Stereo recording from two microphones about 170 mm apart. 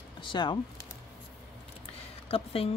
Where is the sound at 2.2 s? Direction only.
35° left (ahead or behind).